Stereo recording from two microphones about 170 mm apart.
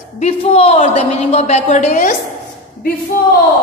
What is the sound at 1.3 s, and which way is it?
Speech, 40° left (ahead or behind).